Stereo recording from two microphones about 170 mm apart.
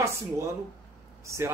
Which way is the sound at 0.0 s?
15° right (ahead or behind).